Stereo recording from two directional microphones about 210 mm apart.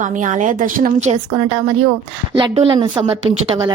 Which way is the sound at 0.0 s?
35° right (ahead or behind).